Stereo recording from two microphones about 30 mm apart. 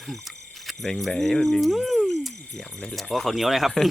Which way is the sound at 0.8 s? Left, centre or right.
Centre.